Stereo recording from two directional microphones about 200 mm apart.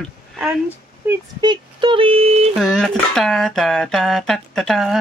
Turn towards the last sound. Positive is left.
turn(degrees=0)  # may be behind; listen again after turning